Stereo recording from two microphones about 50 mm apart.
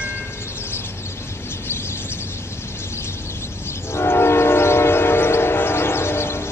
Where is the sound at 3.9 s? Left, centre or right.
Left.